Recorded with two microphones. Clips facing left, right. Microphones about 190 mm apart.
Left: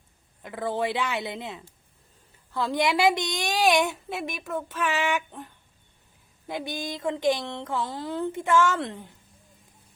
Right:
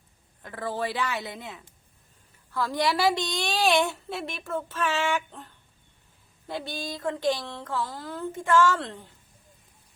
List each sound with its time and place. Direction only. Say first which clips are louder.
0.4 s a woman's voice: left 3 dB; 20° left (ahead or behind)
6.5 s speech: left 2 dB; 15° left (ahead or behind)